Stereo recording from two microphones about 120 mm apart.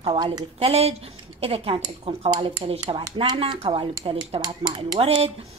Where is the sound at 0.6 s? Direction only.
60° right (ahead or behind).